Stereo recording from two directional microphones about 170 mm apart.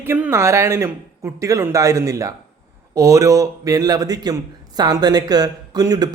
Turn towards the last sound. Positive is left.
turn(degrees=-20)  # may be behind; listen again after turning